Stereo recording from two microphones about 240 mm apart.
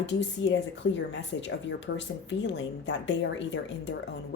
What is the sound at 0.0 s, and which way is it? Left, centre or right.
Speech, left.